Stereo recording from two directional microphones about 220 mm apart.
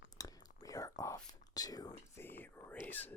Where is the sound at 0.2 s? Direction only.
15° left (ahead or behind).